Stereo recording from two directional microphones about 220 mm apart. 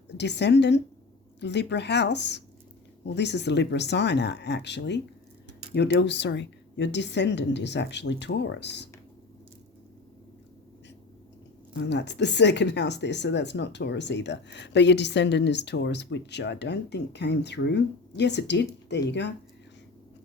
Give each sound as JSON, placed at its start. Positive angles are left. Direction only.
{"t": 0.2, "sound": "speech", "side_deg": 50}
{"t": 11.7, "sound": "speech", "side_deg": 50}